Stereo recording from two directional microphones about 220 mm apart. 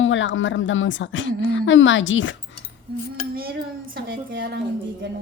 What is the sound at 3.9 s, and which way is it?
Speech, 55° right (ahead or behind).